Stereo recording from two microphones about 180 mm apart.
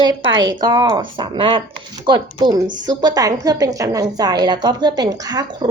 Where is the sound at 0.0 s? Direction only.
25° right (ahead or behind).